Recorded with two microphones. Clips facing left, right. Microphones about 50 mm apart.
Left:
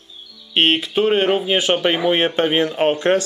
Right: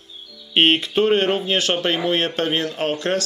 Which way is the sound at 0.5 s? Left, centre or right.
Centre.